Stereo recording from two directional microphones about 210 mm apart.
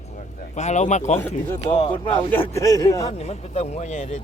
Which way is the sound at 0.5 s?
35° left (ahead or behind).